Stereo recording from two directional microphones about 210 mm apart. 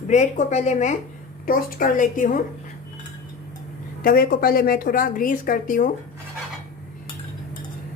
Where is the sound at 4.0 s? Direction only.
45° left (ahead or behind).